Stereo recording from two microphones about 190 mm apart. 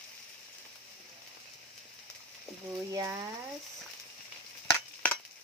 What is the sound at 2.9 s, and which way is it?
Speech, 15° right (ahead or behind).